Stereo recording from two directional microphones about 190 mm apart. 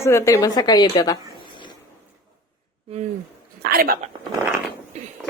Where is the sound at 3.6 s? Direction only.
50° right (ahead or behind).